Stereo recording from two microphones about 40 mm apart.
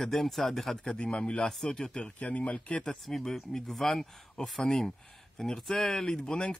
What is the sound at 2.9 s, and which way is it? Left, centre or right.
Speech, centre.